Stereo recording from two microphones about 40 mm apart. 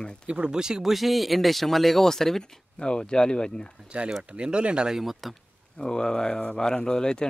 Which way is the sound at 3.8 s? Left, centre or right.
Right.